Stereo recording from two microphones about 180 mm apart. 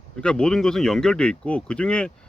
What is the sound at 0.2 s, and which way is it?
Speech, 5° left (ahead or behind).